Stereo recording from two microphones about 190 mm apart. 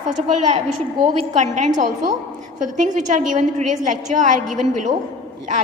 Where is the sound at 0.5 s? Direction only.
25° right (ahead or behind).